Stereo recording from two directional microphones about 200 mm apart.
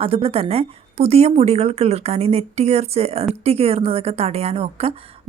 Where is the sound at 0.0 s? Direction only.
30° right (ahead or behind).